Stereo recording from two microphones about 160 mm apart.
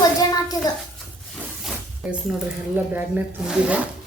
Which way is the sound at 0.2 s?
25° left (ahead or behind).